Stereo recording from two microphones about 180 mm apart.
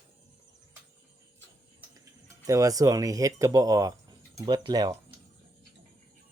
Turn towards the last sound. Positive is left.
turn(degrees=-20)  # may be behind; listen again after turning